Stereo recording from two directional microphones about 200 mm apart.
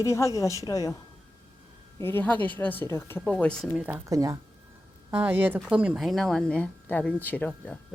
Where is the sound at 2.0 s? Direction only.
10° left (ahead or behind).